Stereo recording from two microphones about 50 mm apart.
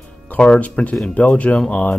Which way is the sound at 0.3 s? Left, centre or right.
Left.